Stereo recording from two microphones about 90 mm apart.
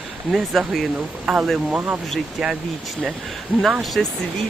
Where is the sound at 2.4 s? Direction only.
Centre (ahead or behind).